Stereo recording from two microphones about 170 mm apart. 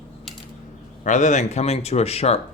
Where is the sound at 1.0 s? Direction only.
45° left (ahead or behind).